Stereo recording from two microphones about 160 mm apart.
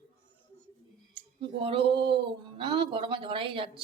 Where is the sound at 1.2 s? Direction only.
35° right (ahead or behind).